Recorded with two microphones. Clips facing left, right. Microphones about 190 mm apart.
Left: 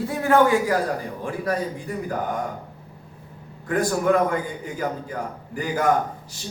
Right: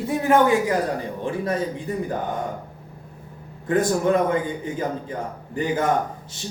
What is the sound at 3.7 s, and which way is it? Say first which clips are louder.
Speech: right 1 dB; 25° right (ahead or behind).